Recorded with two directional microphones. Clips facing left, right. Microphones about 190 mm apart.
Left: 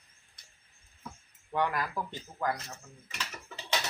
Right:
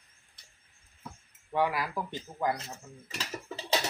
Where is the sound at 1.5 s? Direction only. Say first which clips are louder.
Right 2 dB; 5° right (ahead or behind).